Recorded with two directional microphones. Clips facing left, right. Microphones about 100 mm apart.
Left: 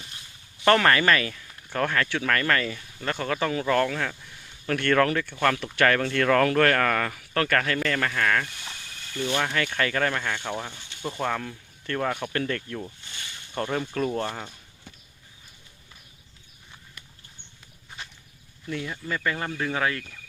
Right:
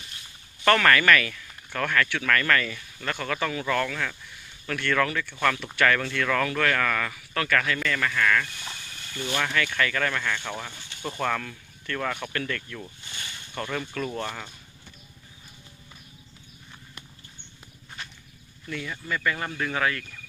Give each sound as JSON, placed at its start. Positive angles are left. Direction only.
{"t": 0.6, "sound": "speech", "side_deg": 25}
{"t": 9.2, "sound": "speech", "side_deg": 20}
{"t": 11.9, "sound": "speech", "side_deg": 30}
{"t": 18.7, "sound": "speech", "side_deg": 25}